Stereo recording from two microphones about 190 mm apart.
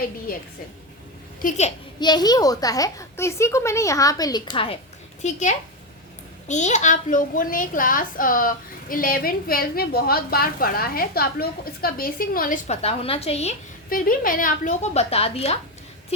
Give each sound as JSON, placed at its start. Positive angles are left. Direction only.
{"t": 1.4, "sound": "a woman's voice", "side_deg": 40}
{"t": 2.0, "sound": "a child's voice", "side_deg": 20}
{"t": 5.2, "sound": "a woman's voice", "side_deg": 40}
{"t": 14.0, "sound": "a woman's voice", "side_deg": 50}